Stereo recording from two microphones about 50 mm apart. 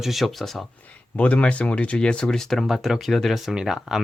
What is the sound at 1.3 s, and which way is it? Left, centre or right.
Speech, left.